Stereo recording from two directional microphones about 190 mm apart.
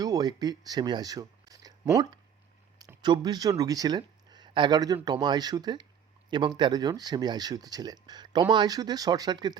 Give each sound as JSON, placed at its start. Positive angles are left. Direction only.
{"t": 0.0, "sound": "speech", "side_deg": -20}